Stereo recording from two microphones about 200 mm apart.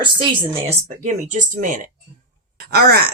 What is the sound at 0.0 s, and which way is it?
Speech, 25° right (ahead or behind).